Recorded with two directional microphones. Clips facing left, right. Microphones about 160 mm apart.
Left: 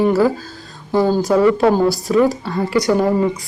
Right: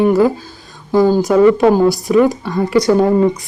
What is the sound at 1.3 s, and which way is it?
A woman's voice, 20° right (ahead or behind).